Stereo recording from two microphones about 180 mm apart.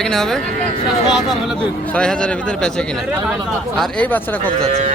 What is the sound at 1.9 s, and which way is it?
Speech, 5° left (ahead or behind).